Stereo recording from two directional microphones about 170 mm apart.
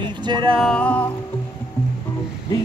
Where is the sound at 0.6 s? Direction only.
5° left (ahead or behind).